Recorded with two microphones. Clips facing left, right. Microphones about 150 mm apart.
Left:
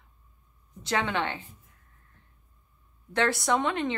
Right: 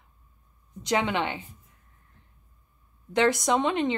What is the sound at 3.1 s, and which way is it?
Speech, 15° right (ahead or behind).